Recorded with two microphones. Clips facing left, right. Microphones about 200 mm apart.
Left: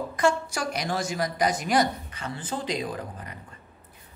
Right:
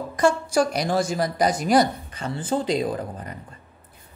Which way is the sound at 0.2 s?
35° right (ahead or behind).